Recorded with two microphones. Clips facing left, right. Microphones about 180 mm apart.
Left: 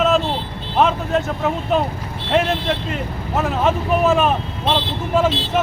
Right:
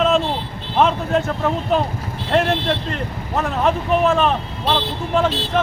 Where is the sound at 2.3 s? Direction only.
5° left (ahead or behind).